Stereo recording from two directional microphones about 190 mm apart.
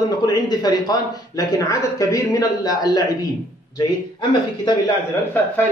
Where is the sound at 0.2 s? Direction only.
20° left (ahead or behind).